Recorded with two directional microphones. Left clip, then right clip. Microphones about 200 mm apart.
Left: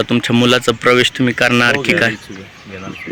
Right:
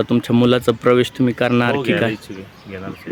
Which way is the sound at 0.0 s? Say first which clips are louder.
Left 3 dB; 5° right (ahead or behind).